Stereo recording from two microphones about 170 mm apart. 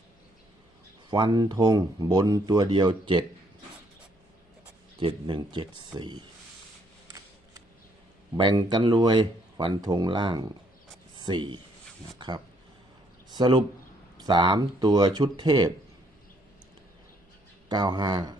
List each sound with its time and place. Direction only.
1.1 s speech: 25° right (ahead or behind)
4.9 s speech: 30° right (ahead or behind)
8.4 s speech: 25° right (ahead or behind)
13.3 s speech: 25° right (ahead or behind)
17.7 s speech: 25° right (ahead or behind)